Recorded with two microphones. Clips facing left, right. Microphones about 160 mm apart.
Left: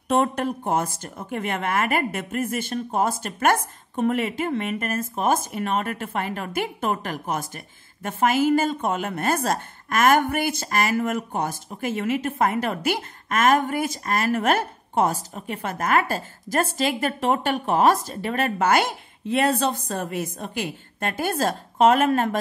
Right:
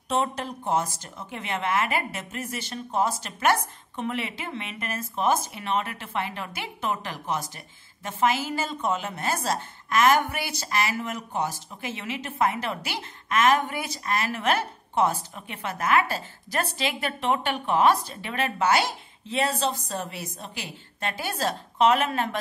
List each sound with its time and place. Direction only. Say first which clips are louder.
0.1 s a woman's voice: left 5 dB; 55° left (ahead or behind)